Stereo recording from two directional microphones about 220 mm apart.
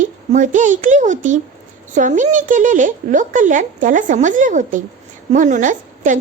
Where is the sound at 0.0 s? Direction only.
35° right (ahead or behind).